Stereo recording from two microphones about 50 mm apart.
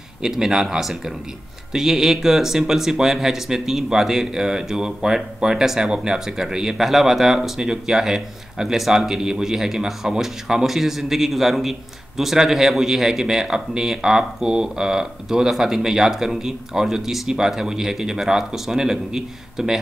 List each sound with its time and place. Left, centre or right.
0.2 s speech: centre